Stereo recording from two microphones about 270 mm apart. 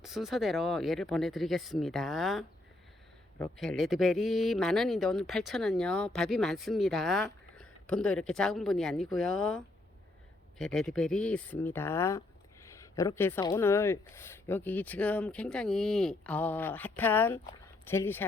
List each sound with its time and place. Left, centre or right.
0.0 s speech: centre
10.6 s speech: centre